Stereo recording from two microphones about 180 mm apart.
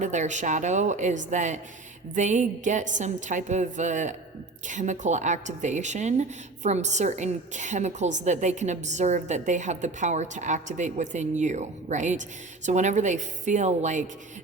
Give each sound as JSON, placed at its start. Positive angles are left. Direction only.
{"t": 0.0, "sound": "a woman's voice", "side_deg": -40}